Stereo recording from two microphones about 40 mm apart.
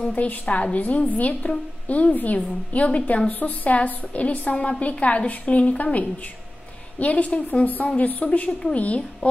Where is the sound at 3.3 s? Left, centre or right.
Left.